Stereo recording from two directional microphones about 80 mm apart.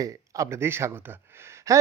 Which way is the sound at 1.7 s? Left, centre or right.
Right.